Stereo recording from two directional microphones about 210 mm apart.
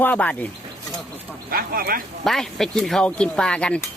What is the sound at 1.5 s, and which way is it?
Speech, 45° right (ahead or behind).